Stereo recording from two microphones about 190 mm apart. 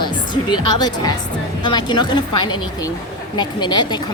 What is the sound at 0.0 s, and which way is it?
A woman's voice, 25° left (ahead or behind).